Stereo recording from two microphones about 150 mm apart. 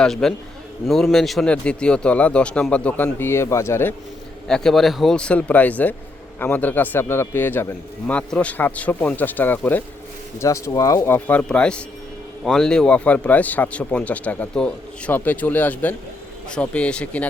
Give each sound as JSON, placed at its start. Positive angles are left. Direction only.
{"t": 0.0, "sound": "a man's voice", "side_deg": 5}
{"t": 4.4, "sound": "speech", "side_deg": 5}